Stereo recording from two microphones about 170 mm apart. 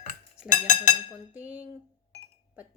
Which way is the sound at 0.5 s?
45° left (ahead or behind).